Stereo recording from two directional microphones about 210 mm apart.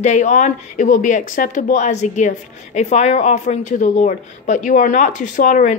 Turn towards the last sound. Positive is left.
turn(degrees=35)  # may be behind; listen again after turning